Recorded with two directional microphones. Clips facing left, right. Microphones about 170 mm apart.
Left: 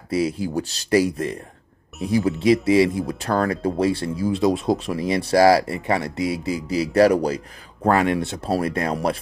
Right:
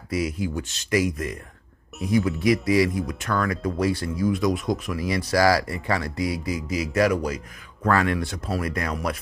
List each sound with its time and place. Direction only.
0.1 s speech: 30° left (ahead or behind)
7.9 s speech: 20° left (ahead or behind)